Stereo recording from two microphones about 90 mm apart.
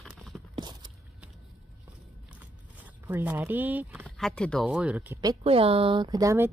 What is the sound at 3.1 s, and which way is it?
Speech, 20° right (ahead or behind).